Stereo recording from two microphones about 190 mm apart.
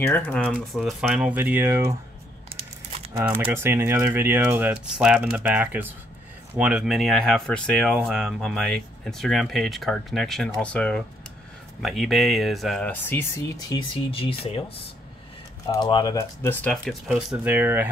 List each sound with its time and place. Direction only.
0.0 s speech: 10° left (ahead or behind); by 2.0 s 15° right (ahead or behind)
3.2 s speech: 10° right (ahead or behind); by 14.6 s 30° left (ahead or behind)
15.6 s speech: 20° left (ahead or behind)
16.6 s speech: centre (ahead or behind)